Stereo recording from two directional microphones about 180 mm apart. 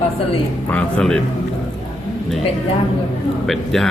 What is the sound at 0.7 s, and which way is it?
Speech, 5° left (ahead or behind).